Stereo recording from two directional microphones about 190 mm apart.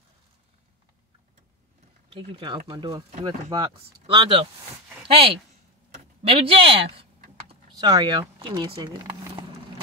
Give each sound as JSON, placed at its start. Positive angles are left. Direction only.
{"t": 2.0, "sound": "speech", "side_deg": -25}